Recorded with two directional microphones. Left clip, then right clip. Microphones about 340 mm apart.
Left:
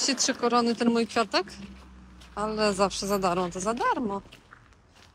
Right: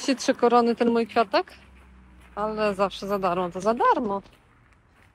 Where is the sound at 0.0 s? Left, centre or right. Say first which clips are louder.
Right 4 dB; centre.